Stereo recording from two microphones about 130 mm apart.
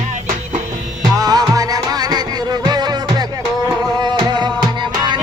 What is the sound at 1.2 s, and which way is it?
Music, 30° right (ahead or behind).